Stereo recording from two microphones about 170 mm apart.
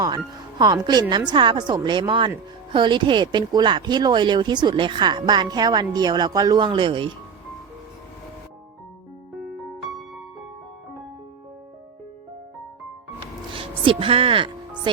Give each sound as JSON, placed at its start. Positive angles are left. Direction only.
{"t": 0.6, "sound": "speech", "side_deg": -25}
{"t": 13.5, "sound": "music", "side_deg": -30}